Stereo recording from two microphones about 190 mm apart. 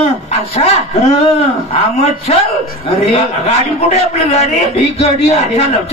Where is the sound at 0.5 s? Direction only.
35° left (ahead or behind).